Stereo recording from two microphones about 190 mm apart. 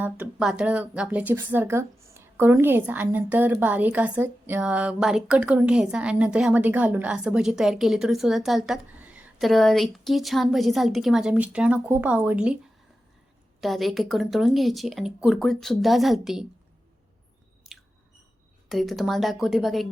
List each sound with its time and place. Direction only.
0.0 s speech: 5° right (ahead or behind)
13.6 s a woman's voice: centre (ahead or behind)
18.7 s a woman's voice: centre (ahead or behind)